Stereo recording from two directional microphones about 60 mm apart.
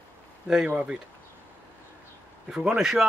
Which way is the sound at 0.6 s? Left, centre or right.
Centre.